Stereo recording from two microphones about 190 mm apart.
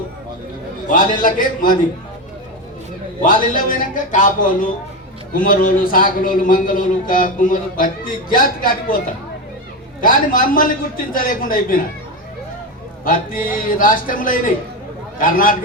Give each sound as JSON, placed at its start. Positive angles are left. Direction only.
{"t": 0.9, "sound": "a man's voice", "side_deg": 45}
{"t": 3.2, "sound": "a man's voice", "side_deg": 45}
{"t": 10.0, "sound": "a man's voice", "side_deg": 45}
{"t": 13.1, "sound": "a man's voice", "side_deg": 45}